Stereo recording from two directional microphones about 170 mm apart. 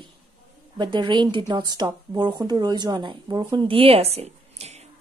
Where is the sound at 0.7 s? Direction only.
25° right (ahead or behind).